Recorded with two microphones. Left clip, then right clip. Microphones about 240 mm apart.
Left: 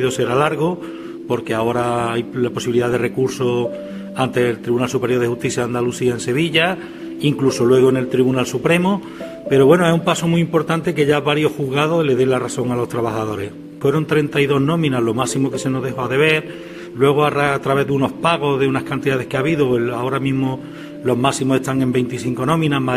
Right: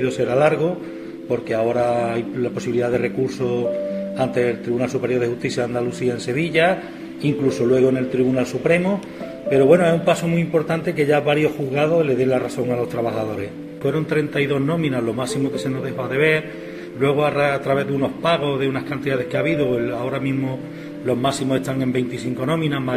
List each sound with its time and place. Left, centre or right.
0.2 s a man's voice: left
21.1 s a man's voice: left